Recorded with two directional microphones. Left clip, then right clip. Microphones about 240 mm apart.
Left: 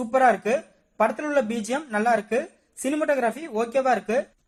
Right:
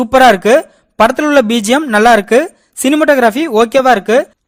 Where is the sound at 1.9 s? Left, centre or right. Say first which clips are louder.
Right 15 dB; right.